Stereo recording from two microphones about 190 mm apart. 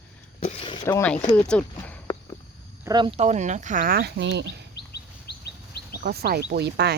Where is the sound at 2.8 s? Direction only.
20° right (ahead or behind); by 4.5 s 65° right (ahead or behind).